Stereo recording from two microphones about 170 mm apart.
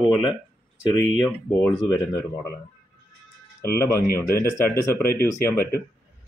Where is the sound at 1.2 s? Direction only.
10° left (ahead or behind).